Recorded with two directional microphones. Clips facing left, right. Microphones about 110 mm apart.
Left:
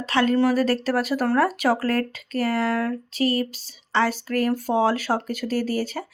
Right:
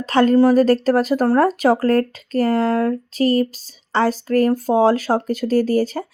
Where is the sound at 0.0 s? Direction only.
40° right (ahead or behind).